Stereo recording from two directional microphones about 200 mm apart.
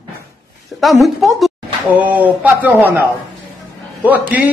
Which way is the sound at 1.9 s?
10° right (ahead or behind).